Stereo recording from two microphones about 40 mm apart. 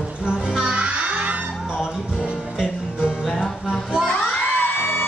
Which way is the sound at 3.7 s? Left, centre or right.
Centre.